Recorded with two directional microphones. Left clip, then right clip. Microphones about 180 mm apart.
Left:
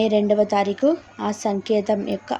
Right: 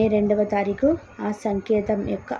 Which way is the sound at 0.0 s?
15° left (ahead or behind).